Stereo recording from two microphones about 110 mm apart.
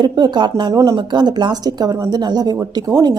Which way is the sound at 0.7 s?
30° right (ahead or behind).